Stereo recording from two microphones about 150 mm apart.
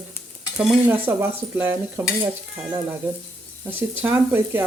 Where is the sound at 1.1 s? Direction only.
15° right (ahead or behind).